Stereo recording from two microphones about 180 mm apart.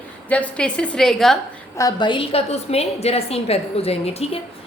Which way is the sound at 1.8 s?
20° left (ahead or behind).